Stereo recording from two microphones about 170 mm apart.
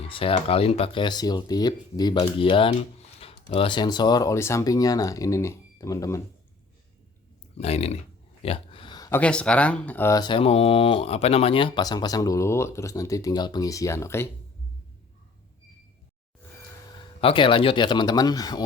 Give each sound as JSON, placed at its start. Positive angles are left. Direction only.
{"t": 0.1, "sound": "speech", "side_deg": 30}
{"t": 7.5, "sound": "speech", "side_deg": 40}
{"t": 8.4, "sound": "a sound", "side_deg": 35}
{"t": 9.2, "sound": "speech", "side_deg": 5}
{"t": 17.0, "sound": "speech", "side_deg": 30}